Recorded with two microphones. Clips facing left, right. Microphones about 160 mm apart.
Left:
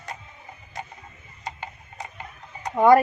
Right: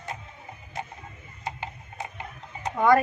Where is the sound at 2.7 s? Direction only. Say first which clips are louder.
Left 5 dB; 25° left (ahead or behind).